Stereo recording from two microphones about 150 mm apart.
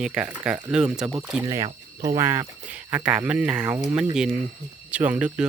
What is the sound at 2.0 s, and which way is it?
Speech, 20° right (ahead or behind).